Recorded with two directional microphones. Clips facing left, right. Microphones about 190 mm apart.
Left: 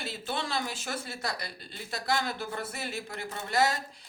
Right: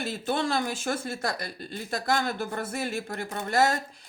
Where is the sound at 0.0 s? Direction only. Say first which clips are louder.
Right 7 dB; 50° right (ahead or behind).